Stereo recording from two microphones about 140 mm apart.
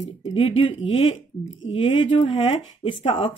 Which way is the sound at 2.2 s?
40° left (ahead or behind).